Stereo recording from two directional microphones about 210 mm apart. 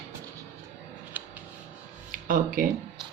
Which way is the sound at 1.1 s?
10° right (ahead or behind).